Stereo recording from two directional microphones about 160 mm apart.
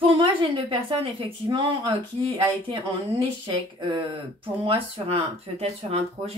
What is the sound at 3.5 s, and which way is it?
A woman's voice, 30° right (ahead or behind).